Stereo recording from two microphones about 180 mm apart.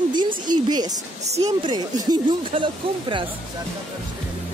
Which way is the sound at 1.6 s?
25° right (ahead or behind).